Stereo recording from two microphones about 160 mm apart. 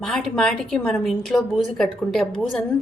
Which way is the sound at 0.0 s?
5° left (ahead or behind).